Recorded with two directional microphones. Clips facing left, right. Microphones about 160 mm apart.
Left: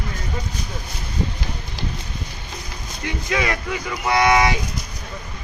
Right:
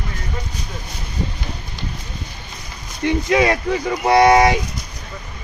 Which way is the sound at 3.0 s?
30° right (ahead or behind).